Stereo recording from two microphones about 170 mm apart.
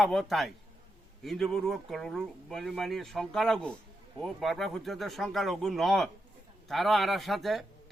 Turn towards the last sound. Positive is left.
turn(degrees=0)  # may be behind; listen again after turning